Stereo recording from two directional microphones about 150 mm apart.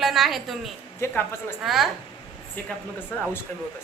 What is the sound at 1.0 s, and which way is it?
Speech, 15° left (ahead or behind).